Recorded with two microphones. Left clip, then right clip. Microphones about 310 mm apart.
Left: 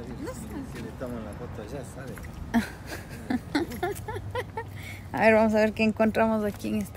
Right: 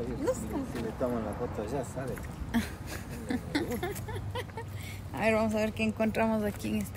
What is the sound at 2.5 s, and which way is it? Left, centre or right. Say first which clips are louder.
Speech: left 5 dB; centre.